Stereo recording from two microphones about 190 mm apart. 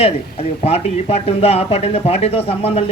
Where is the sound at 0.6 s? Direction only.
35° left (ahead or behind).